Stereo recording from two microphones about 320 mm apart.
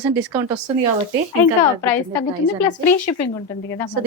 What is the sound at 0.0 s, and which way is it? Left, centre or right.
Speech, centre.